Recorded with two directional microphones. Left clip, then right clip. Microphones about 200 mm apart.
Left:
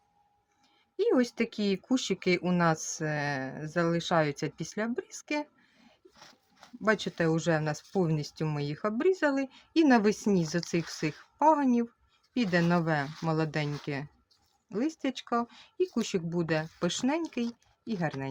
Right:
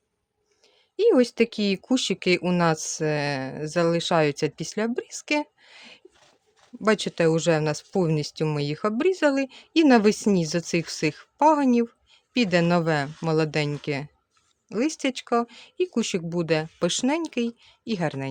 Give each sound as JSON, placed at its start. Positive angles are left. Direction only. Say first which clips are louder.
{"t": 0.9, "sound": "speech", "louder": "right 8 dB", "side_deg": -50}